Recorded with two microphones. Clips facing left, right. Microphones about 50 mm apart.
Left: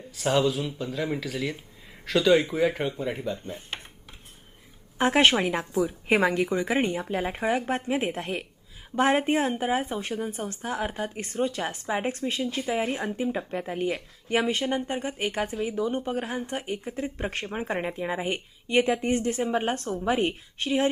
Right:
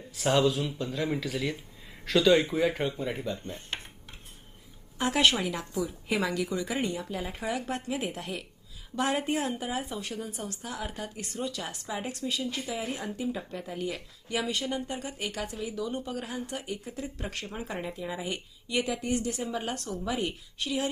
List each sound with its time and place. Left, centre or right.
0.2 s speech: centre
4.9 s speech: left